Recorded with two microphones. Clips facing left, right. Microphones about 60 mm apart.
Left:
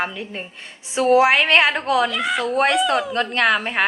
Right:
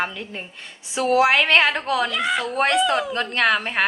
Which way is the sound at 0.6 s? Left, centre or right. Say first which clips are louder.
Left 3 dB; left.